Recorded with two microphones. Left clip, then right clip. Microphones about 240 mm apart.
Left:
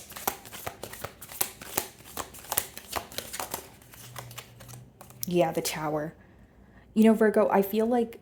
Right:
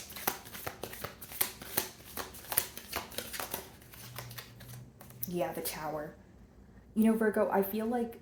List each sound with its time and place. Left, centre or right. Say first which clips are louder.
0.1 s shuffling cards: left 4 dB; left
4.2 s typewriter: left 3 dB; left
5.2 s a woman's voice: left 9 dB; left
6.9 s a woman's voice: left 8 dB; left